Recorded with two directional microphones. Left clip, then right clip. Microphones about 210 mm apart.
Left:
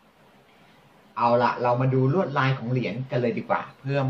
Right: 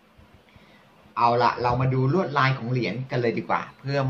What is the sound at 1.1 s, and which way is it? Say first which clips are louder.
A man's voice: right 1 dB; 40° right (ahead or behind).